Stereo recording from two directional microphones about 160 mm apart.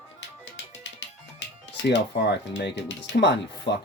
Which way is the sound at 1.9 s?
90° left.